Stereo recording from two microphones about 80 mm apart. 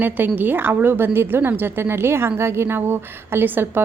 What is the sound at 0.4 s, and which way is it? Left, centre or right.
A woman's voice, right.